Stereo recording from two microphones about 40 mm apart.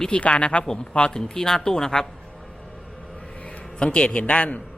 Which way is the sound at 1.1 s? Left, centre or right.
Centre.